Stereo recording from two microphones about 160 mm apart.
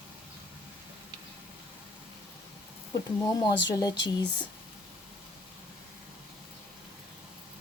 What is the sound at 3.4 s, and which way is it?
Speech, 25° left (ahead or behind).